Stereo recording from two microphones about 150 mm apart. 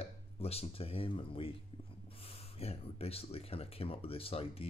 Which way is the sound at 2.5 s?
40° left (ahead or behind).